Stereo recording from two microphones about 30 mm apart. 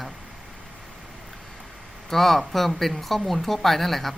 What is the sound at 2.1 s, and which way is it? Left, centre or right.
Speech, centre.